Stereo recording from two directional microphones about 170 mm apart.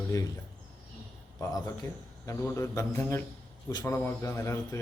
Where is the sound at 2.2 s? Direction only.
15° left (ahead or behind).